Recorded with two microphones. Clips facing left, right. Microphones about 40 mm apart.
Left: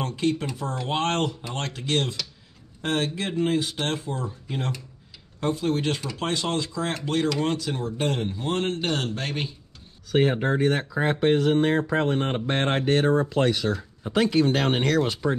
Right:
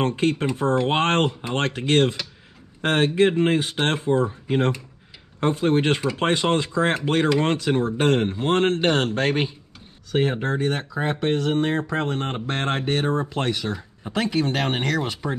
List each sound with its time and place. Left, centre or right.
0.0 s speech: right
10.1 s speech: centre
14.2 s speech: right
14.8 s speech: centre